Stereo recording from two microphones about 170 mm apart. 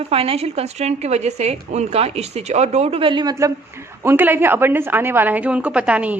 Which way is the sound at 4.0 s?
15° right (ahead or behind).